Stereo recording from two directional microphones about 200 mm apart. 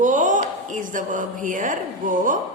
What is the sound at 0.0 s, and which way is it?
A woman's voice, 40° right (ahead or behind).